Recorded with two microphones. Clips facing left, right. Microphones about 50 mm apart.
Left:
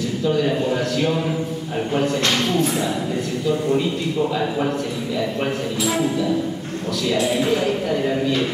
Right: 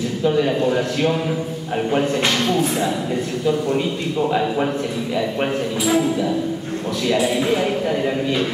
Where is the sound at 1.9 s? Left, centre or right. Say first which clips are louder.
Right 1 dB; centre.